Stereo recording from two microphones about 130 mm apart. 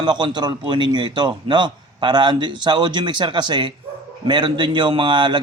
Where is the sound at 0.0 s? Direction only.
35° right (ahead or behind).